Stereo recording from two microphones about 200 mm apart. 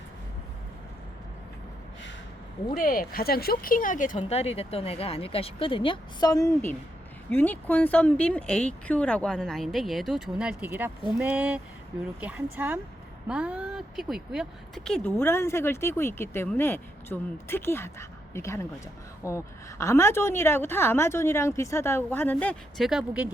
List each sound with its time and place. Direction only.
2.7 s a woman's voice: 45° left (ahead or behind); by 23.3 s 5° right (ahead or behind)